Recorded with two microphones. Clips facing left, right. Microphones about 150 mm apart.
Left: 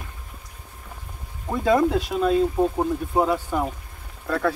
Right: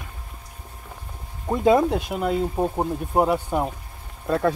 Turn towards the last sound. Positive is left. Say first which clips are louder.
# right 2 dB
turn(degrees=-20)  # may be behind; listen again after turning